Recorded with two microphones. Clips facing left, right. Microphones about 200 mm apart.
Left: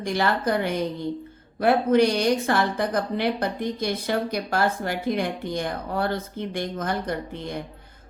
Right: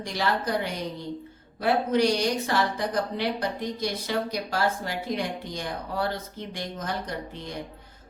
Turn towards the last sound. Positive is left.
turn(degrees=55)  # may be behind; listen again after turning